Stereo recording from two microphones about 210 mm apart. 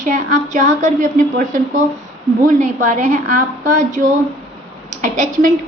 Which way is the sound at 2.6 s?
35° right (ahead or behind).